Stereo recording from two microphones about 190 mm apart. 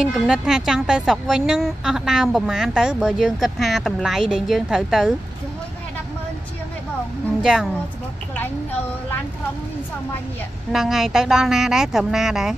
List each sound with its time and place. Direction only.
0.0 s a woman's voice: 5° right (ahead or behind)
7.4 s a woman's voice: centre (ahead or behind)
10.7 s a woman's voice: centre (ahead or behind)